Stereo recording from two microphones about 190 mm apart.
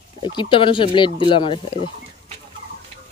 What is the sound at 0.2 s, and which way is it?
Speech, 25° left (ahead or behind).